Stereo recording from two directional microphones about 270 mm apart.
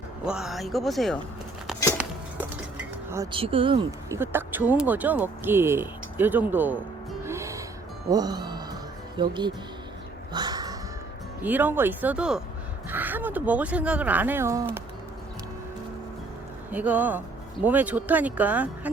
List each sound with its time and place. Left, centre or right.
0.3 s speech: centre
2.7 s speech: centre
4.2 s speech: centre
7.3 s music: centre
9.1 s speech: centre
10.3 s crow: centre
11.4 s speech: centre
16.7 s speech: centre